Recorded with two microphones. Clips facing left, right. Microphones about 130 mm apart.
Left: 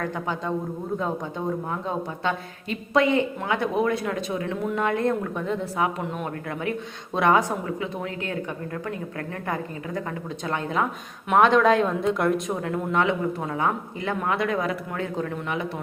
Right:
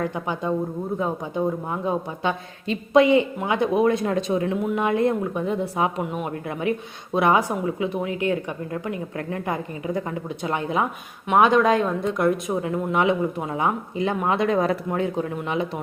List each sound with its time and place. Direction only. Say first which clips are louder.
0.0 s speech: right 2 dB; 15° right (ahead or behind)
1.7 s speech: right 3 dB; 15° right (ahead or behind)
4.6 s speech: left 1 dB; 15° right (ahead or behind)
11.3 s speech: right 1 dB; 5° right (ahead or behind); by 14.8 s 30° right (ahead or behind)
14.9 s speech: right 4 dB; 15° right (ahead or behind)